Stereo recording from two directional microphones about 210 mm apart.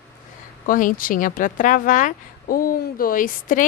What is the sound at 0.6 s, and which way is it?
Speech, 40° left (ahead or behind).